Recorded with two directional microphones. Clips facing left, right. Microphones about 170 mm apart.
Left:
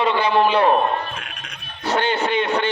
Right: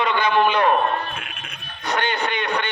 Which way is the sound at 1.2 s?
5° right (ahead or behind).